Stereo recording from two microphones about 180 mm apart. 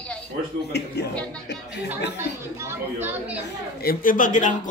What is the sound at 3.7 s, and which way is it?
Speech, 55° left (ahead or behind).